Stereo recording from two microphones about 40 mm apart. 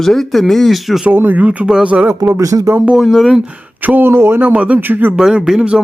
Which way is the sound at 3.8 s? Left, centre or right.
Right.